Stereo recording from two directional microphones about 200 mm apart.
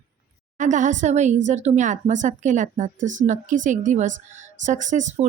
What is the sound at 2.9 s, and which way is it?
Speech, 70° right (ahead or behind).